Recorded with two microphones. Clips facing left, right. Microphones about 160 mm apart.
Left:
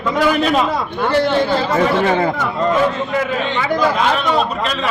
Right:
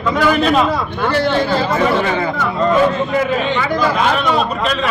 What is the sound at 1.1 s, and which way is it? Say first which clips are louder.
Speech: left 1 dB; 20° left (ahead or behind).